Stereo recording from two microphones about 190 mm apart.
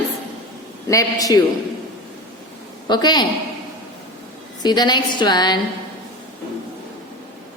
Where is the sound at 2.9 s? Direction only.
20° left (ahead or behind).